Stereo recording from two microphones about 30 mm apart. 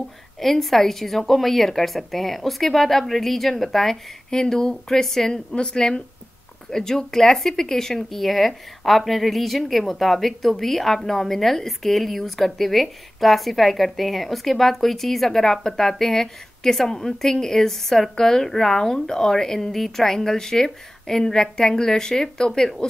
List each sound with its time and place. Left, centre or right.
0.4 s speech: centre
4.3 s speech: left
5.3 s speech: left